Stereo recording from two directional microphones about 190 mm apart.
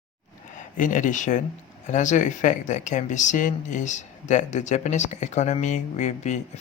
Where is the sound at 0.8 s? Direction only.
45° left (ahead or behind).